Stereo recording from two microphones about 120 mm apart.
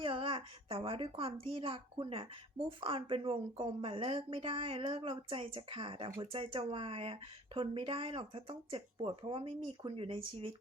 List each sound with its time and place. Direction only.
0.0 s a woman's voice: 45° right (ahead or behind)